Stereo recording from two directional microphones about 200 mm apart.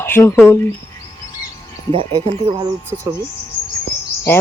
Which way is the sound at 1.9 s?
30° right (ahead or behind).